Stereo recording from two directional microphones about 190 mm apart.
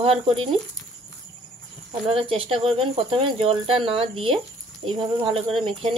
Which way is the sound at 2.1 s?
30° right (ahead or behind).